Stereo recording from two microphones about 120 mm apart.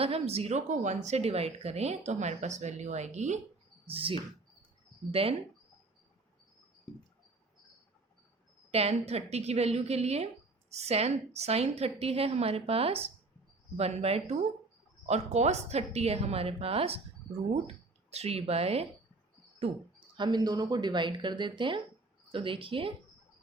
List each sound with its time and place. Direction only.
0.0 s speech: 55° right (ahead or behind); by 3.4 s 75° right (ahead or behind)
3.8 s speech: 50° right (ahead or behind)
5.2 s speech: 50° right (ahead or behind)
8.7 s a woman's voice: 60° right (ahead or behind)
20.1 s speech: 35° right (ahead or behind)